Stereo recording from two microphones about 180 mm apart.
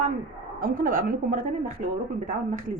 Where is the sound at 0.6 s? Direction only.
50° right (ahead or behind).